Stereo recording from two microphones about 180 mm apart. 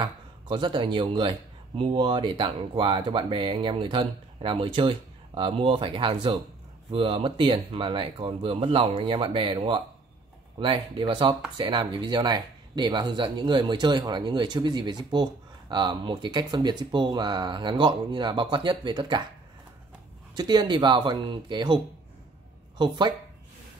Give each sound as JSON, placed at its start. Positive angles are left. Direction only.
{"t": 0.0, "sound": "speech", "side_deg": -25}
{"t": 20.3, "sound": "speech", "side_deg": -25}
{"t": 22.8, "sound": "speech", "side_deg": -25}